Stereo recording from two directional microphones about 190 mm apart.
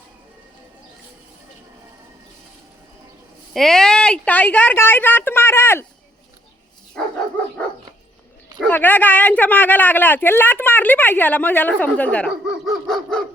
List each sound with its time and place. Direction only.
3.5 s a woman's voice: centre (ahead or behind)
8.5 s a man's voice: 10° left (ahead or behind)
12.5 s dog: centre (ahead or behind)